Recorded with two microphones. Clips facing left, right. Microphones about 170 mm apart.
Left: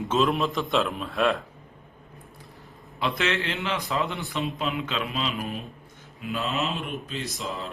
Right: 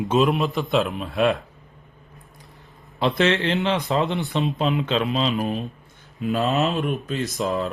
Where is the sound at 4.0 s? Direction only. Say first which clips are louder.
Right 6 dB; 20° right (ahead or behind).